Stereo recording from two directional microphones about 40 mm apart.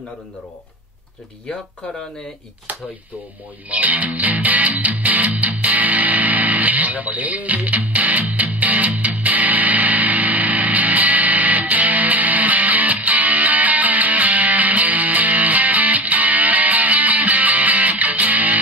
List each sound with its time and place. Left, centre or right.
3.7 s music: right